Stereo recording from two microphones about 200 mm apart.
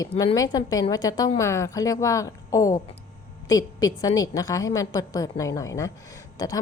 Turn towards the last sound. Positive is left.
turn(degrees=20)  # may be behind; listen again after turning